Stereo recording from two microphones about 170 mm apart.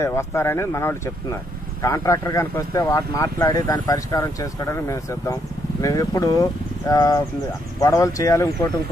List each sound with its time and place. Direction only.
0.0 s speech: 15° left (ahead or behind)